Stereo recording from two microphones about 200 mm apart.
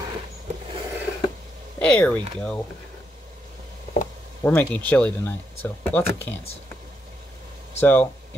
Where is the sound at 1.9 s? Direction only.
5° left (ahead or behind).